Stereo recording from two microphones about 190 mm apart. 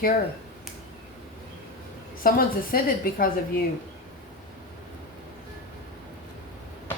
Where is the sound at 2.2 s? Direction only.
50° left (ahead or behind).